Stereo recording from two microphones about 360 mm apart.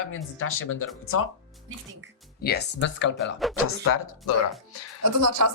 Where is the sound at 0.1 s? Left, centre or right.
Left.